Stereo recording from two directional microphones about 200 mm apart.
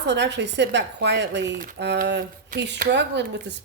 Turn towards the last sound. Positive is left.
turn(degrees=-60)  # may be behind; listen again after turning